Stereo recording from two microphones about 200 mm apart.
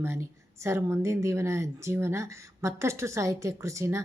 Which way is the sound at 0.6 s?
15° right (ahead or behind).